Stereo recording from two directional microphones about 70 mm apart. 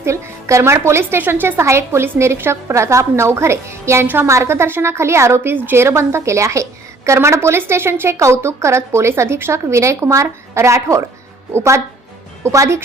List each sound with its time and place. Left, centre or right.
0.0 s a woman's voice: right
4.0 s a woman's voice: right
4.3 s a woman's voice: right